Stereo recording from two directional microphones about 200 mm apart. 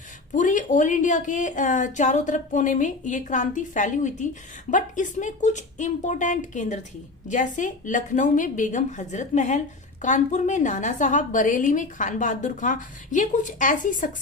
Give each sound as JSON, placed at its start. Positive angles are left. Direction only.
{"t": 0.3, "sound": "a woman's voice", "side_deg": 40}